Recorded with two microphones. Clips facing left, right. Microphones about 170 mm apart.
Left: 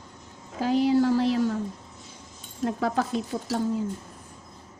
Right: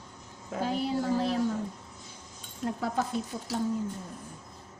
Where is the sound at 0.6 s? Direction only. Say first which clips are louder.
Left 8 dB; 90° left.